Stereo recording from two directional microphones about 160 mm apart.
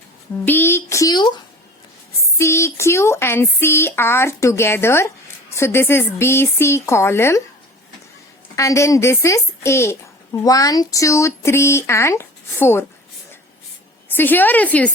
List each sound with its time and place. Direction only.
0.4 s a woman's voice: 15° left (ahead or behind)
2.4 s a woman's voice: 15° left (ahead or behind)
8.5 s a woman's voice: 20° left (ahead or behind)
14.2 s a woman's voice: 10° left (ahead or behind)